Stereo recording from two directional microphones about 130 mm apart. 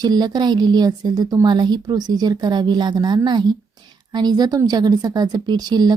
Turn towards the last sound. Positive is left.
turn(degrees=-30)  # may be behind; listen again after turning